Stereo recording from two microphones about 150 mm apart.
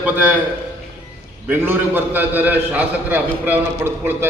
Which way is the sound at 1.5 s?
15° right (ahead or behind).